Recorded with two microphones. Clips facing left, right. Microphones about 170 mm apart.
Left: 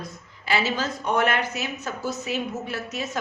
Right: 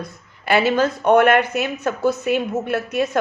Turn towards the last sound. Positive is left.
turn(degrees=-60)  # may be behind; listen again after turning